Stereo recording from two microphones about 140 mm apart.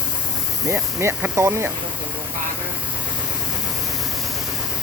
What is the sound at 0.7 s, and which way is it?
Speech, 20° right (ahead or behind).